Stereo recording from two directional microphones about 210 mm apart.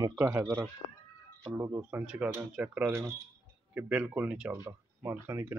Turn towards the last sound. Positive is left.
turn(degrees=-10)  # may be behind; listen again after turning